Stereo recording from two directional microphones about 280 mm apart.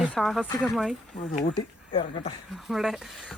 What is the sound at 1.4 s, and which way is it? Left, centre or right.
Speech, centre.